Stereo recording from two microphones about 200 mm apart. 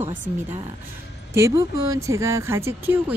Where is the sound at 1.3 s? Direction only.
15° right (ahead or behind).